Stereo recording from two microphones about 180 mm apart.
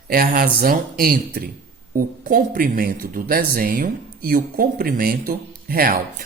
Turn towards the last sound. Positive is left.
turn(degrees=-55)  # may be behind; listen again after turning